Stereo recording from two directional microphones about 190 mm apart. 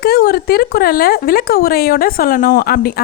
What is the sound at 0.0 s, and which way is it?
Speech, 55° left (ahead or behind).